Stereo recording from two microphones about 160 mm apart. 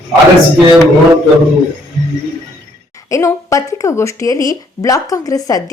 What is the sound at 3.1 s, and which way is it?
Speech, 20° left (ahead or behind).